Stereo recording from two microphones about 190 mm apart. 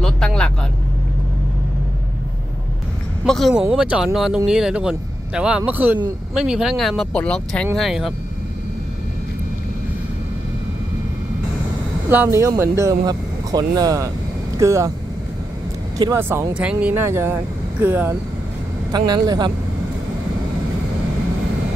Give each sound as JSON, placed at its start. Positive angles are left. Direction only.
{"t": 0.0, "sound": "vehicle", "side_deg": 5}
{"t": 3.3, "sound": "speech", "side_deg": 0}
{"t": 12.1, "sound": "speech", "side_deg": -10}
{"t": 16.0, "sound": "speech", "side_deg": -15}
{"t": 18.9, "sound": "a man's voice", "side_deg": -20}